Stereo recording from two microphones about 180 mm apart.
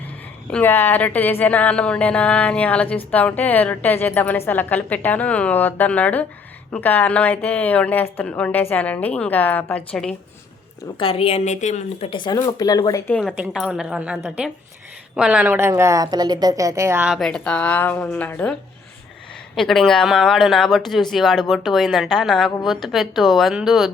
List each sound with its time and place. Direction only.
0.5 s speech: 10° left (ahead or behind)
11.0 s a woman's voice: 30° left (ahead or behind)
13.1 s speech: 5° left (ahead or behind)
13.4 s a woman's voice: 5° right (ahead or behind)
17.1 s speech: centre (ahead or behind)
19.5 s speech: 5° left (ahead or behind)